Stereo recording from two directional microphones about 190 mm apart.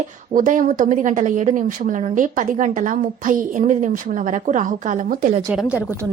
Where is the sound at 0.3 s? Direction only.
40° right (ahead or behind).